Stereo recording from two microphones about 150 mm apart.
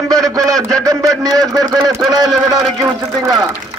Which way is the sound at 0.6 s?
25° right (ahead or behind).